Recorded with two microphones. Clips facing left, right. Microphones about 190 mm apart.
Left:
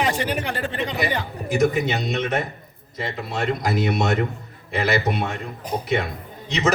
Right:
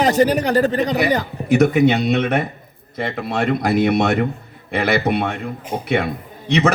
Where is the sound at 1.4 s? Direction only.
65° right (ahead or behind).